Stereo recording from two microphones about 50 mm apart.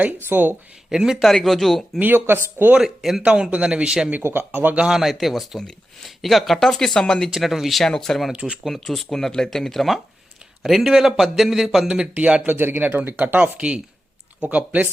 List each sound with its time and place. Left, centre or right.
0.3 s speech: right
0.9 s speech: centre
1.2 s speech: centre
2.0 s speech: right
2.8 s speech: centre
3.2 s speech: right
4.2 s speech: right
4.9 s speech: centre
7.3 s speech: centre
7.9 s speech: centre
8.3 s speech: centre
8.6 s speech: centre
12.1 s speech: right
12.5 s speech: right